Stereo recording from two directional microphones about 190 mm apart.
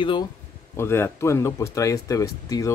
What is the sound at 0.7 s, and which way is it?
Speech, 15° left (ahead or behind).